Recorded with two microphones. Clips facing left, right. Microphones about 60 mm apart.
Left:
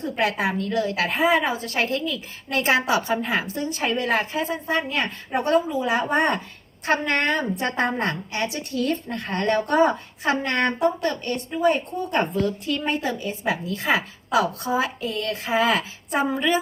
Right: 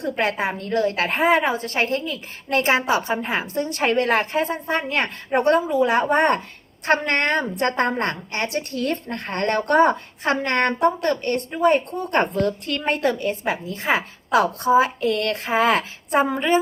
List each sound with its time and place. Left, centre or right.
0.3 s a woman's voice: right
0.7 s a woman's voice: right
1.7 s a woman's voice: right
3.4 s a woman's voice: right
13.4 s a woman's voice: right
14.3 s a woman's voice: right
14.7 s a woman's voice: right
15.0 s a sound: right
15.4 s a woman's voice: right